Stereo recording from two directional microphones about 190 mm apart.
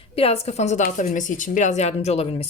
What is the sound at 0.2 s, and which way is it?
A woman's voice, 30° left (ahead or behind).